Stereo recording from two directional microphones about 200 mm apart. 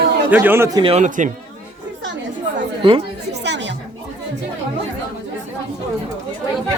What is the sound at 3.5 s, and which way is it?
Chatter, 60° right (ahead or behind).